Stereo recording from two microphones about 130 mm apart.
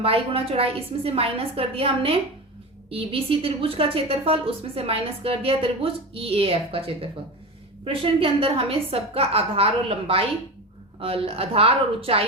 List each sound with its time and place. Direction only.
0.0 s a woman's voice: 45° right (ahead or behind)